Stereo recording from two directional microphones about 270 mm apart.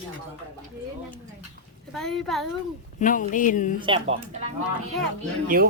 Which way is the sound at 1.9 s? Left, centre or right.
Centre.